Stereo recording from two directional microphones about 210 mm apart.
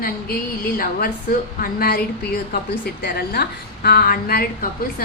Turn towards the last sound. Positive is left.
turn(degrees=45)  # may be behind; listen again after turning